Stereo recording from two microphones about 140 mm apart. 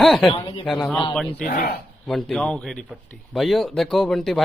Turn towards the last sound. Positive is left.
turn(degrees=0)  # may be behind; listen again after turning